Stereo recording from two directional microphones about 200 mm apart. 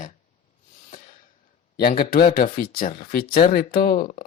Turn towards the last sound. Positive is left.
turn(degrees=45)  # may be behind; listen again after turning